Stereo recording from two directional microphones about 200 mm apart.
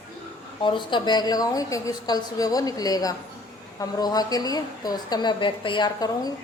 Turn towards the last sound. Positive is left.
turn(degrees=20)  # may be behind; listen again after turning